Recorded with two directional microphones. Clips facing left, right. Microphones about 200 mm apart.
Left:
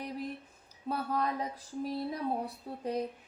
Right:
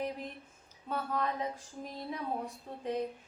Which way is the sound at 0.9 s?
35° left (ahead or behind).